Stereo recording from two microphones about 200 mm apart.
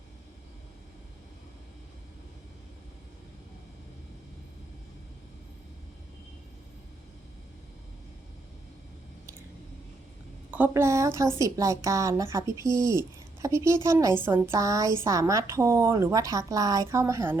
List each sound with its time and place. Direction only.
10.5 s a woman's voice: 10° right (ahead or behind)